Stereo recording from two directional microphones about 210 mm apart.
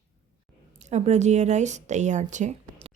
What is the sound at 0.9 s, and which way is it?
Speech, 30° right (ahead or behind).